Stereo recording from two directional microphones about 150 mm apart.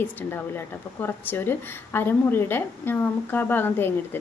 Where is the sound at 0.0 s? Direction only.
15° left (ahead or behind).